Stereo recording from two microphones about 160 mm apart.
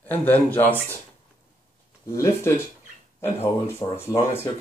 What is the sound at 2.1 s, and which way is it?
Speech, 20° left (ahead or behind).